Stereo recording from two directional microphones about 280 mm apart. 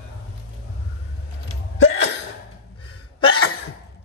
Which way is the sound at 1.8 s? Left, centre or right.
Left.